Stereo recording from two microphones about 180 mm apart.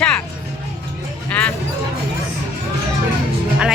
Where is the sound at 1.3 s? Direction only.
10° left (ahead or behind).